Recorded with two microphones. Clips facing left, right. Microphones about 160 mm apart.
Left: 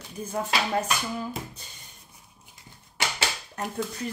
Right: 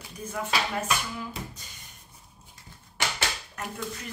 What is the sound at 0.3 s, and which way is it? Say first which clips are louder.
Speech: left 3 dB; 35° left (ahead or behind).